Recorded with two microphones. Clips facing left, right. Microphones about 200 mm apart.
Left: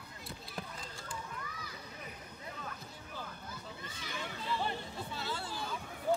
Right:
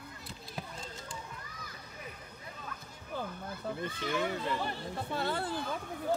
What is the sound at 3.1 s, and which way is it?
Speech, 55° right (ahead or behind).